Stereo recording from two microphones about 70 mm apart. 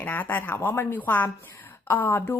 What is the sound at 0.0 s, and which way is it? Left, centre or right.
A woman's voice, left.